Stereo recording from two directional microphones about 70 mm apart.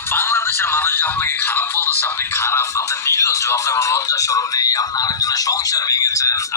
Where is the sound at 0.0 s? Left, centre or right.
Left.